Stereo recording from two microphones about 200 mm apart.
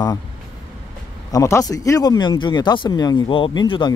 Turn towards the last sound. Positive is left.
turn(degrees=25)  # may be behind; listen again after turning